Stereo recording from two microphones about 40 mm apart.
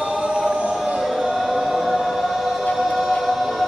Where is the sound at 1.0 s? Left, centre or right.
Centre.